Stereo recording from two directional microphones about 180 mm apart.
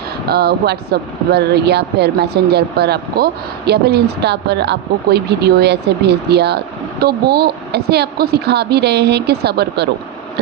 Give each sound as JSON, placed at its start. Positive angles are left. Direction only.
{"t": 0.3, "sound": "speech", "side_deg": -60}